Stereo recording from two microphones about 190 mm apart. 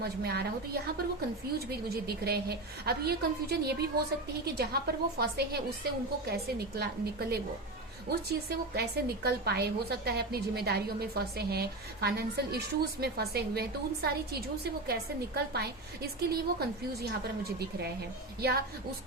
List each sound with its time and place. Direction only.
0.0 s a woman's voice: 55° right (ahead or behind)
2.2 s a woman's voice: 55° right (ahead or behind)